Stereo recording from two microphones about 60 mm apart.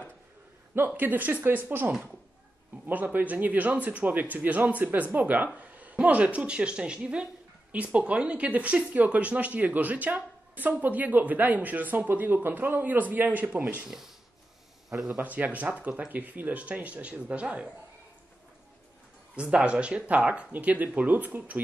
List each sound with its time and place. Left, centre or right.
0.7 s speech: right
1.9 s speech: centre
2.9 s speech: right
13.8 s speech: centre
15.0 s speech: right
19.3 s speech: centre